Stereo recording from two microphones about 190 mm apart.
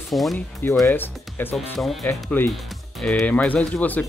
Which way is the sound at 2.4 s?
10° left (ahead or behind).